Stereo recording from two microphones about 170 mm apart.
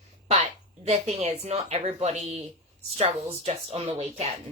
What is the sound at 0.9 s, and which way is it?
Speech, 40° right (ahead or behind).